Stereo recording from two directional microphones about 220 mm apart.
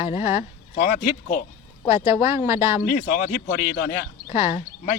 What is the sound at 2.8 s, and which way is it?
Speech, 35° left (ahead or behind).